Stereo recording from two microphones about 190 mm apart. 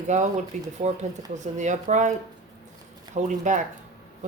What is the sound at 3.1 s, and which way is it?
Speech, 40° right (ahead or behind).